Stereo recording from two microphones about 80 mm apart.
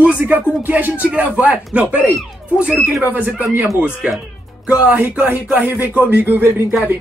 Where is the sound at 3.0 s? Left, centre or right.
Right.